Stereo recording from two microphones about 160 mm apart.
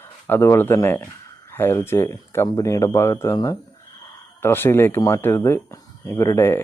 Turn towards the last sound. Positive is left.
turn(degrees=15)  # may be behind; listen again after turning